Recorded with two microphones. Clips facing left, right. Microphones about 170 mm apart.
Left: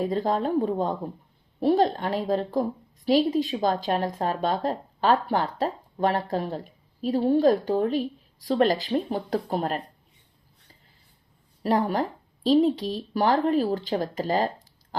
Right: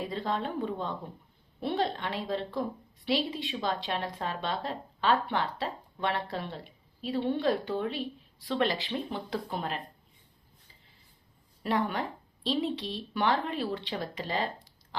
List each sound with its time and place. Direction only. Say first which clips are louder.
0.0 s a woman's voice: left 8 dB; 40° left (ahead or behind)
11.6 s a woman's voice: left 6 dB; 40° left (ahead or behind)